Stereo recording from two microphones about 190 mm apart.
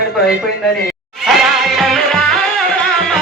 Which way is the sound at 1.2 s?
Centre (ahead or behind).